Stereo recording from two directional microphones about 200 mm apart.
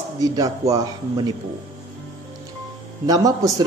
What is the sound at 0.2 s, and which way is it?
Speech, 20° right (ahead or behind).